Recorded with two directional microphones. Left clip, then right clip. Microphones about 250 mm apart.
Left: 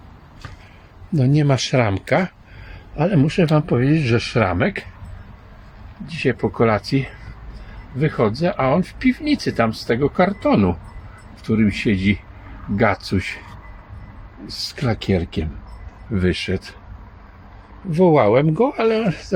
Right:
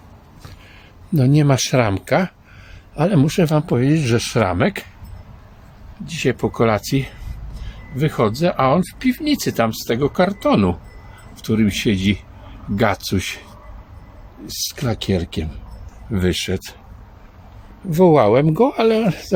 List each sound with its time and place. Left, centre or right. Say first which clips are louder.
1.1 s speech: right 2 dB; centre
6.1 s speech: right 1 dB; centre
14.4 s speech: even; centre
17.9 s speech: right 1 dB; centre